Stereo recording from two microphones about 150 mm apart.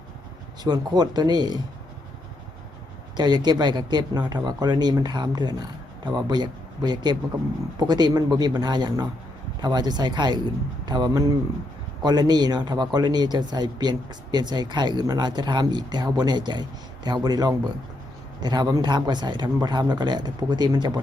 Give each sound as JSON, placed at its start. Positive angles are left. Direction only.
{"t": 0.6, "sound": "speech", "side_deg": -25}
{"t": 3.2, "sound": "speech", "side_deg": -30}